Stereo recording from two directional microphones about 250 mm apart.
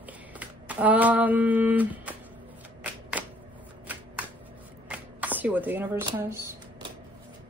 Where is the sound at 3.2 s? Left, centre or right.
Centre.